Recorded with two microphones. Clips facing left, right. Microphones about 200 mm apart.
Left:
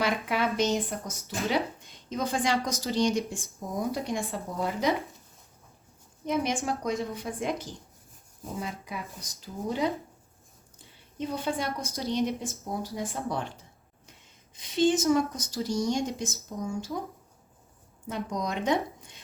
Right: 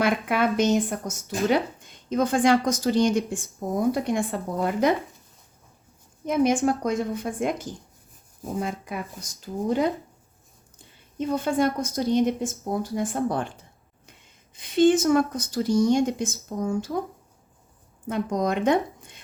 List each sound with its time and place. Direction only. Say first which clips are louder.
0.0 s speech: right 5 dB; 55° right (ahead or behind)
6.2 s speech: right 7 dB; 50° right (ahead or behind)
11.3 s speech: right 8 dB; 50° right (ahead or behind)
14.5 s speech: right 6 dB; 55° right (ahead or behind)
18.1 s speech: right 7 dB; 55° right (ahead or behind)